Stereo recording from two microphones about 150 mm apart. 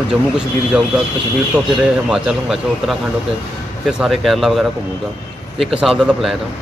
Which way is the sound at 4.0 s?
Centre (ahead or behind).